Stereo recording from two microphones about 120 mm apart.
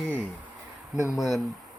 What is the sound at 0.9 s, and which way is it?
Speech, 25° left (ahead or behind).